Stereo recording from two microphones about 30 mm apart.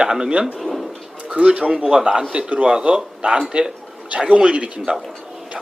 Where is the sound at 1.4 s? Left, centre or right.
Right.